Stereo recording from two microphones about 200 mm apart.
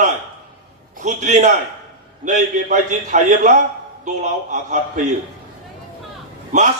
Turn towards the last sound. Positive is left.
turn(degrees=-40)  # may be behind; listen again after turning